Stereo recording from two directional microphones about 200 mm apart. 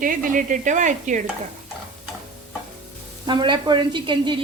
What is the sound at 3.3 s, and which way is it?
Speech, 25° right (ahead or behind).